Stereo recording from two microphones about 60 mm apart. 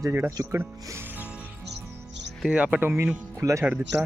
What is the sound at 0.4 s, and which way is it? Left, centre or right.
Speech, right.